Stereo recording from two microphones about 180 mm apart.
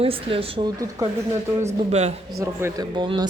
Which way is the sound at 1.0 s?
20° right (ahead or behind).